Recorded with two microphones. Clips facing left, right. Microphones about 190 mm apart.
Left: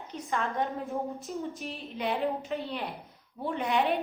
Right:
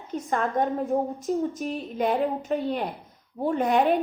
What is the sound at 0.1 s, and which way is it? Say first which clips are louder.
A woman's voice: right 6 dB; 55° right (ahead or behind).